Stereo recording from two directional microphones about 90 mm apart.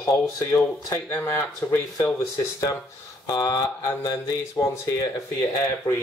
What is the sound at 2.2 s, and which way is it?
Speech, 35° left (ahead or behind).